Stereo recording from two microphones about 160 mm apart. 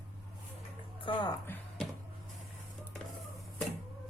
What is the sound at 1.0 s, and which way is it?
Speech, 30° left (ahead or behind).